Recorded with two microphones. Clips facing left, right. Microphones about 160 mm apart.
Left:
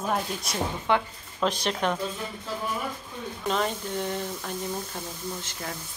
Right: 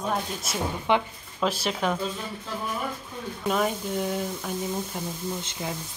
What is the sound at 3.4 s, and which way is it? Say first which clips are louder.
Speech: right 2 dB; 5° right (ahead or behind).